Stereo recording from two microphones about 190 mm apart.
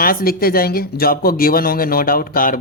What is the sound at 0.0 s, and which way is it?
Speech, 50° left (ahead or behind).